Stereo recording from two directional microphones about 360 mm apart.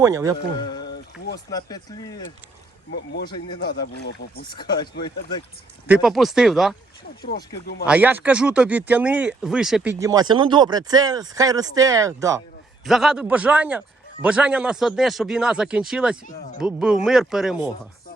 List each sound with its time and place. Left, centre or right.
0.0 s speech: centre
1.5 s speech: centre
2.9 s speech: left
3.2 s speech: centre
3.6 s speech: left
4.4 s speech: centre
5.9 s a man's voice: centre
7.3 s speech: left
7.9 s a man's voice: centre